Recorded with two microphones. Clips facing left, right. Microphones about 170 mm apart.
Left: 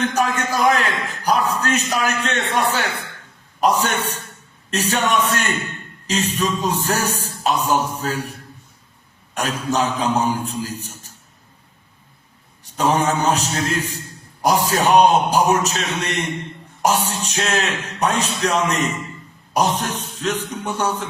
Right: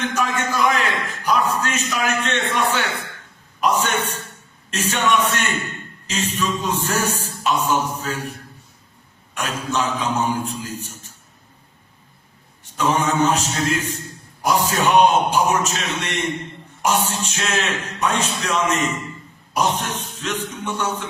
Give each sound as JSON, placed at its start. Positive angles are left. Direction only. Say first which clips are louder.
{"t": 0.0, "sound": "speech", "louder": "left 2 dB", "side_deg": 40}
{"t": 3.6, "sound": "speech", "louder": "left 2 dB", "side_deg": 35}
{"t": 12.7, "sound": "speech", "louder": "left 1 dB", "side_deg": 35}